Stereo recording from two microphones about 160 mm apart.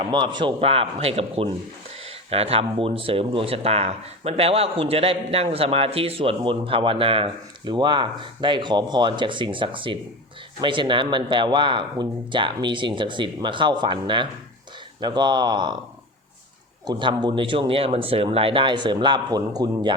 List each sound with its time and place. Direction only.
0.0 s speech: 30° right (ahead or behind)
16.8 s speech: 25° right (ahead or behind)